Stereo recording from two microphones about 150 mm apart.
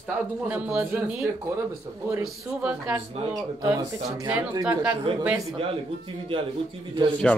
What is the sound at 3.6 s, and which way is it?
Speech, 25° right (ahead or behind).